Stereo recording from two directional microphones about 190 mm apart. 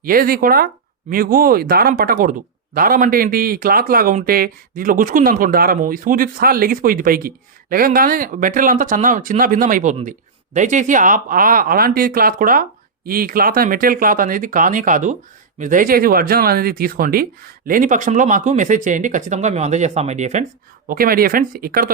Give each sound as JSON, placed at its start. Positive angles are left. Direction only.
{"t": 0.0, "sound": "speech", "side_deg": -50}
{"t": 20.8, "sound": "speech", "side_deg": -50}